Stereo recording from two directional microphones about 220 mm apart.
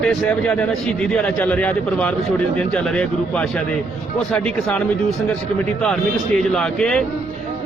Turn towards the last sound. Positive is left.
turn(degrees=5)  # may be behind; listen again after turning